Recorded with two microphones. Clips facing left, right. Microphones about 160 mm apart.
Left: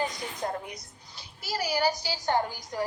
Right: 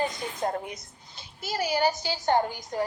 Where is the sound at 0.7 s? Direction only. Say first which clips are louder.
Right 2 dB; 25° right (ahead or behind).